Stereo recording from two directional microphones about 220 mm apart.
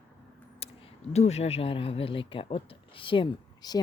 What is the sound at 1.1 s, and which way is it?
Speech, 30° left (ahead or behind).